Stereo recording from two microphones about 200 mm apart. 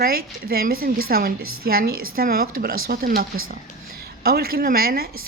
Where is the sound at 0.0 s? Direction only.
50° right (ahead or behind).